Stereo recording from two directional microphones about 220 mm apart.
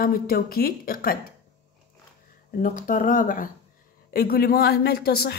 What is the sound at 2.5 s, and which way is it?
A woman's voice, 40° left (ahead or behind).